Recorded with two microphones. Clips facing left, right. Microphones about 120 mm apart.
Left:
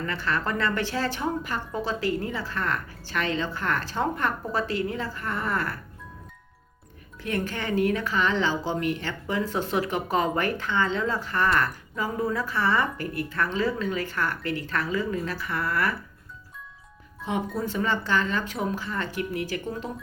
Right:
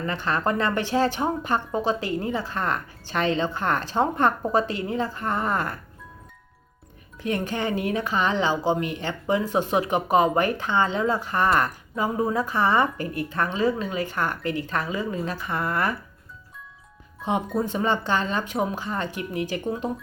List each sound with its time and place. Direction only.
0.0 s speech: 20° right (ahead or behind)
7.2 s speech: 20° right (ahead or behind)
17.2 s speech: 20° right (ahead or behind)